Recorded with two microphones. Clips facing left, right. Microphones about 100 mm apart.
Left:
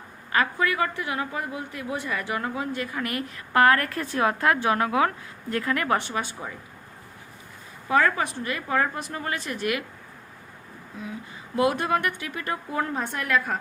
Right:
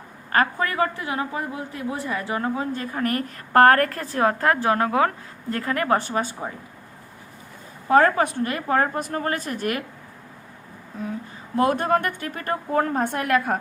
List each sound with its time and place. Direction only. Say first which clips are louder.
0.3 s a woman's voice: right 2 dB; 40° right (ahead or behind)
7.9 s a woman's voice: right 5 dB; 45° right (ahead or behind)
11.5 s a woman's voice: right 3 dB; 40° right (ahead or behind)